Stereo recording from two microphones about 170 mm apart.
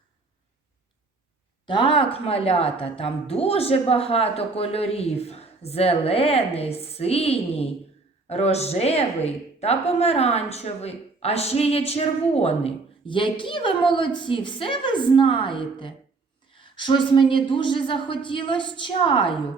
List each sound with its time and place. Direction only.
1.6 s a woman's voice: 30° left (ahead or behind)